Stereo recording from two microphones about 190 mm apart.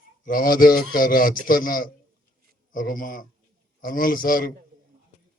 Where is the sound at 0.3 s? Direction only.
50° left (ahead or behind).